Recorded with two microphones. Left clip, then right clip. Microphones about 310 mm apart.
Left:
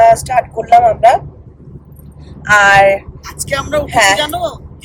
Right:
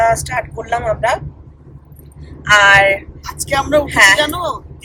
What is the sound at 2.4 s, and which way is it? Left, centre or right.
Speech, centre.